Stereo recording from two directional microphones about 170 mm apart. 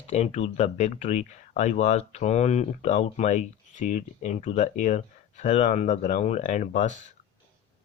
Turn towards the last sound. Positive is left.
turn(degrees=45)  # may be behind; listen again after turning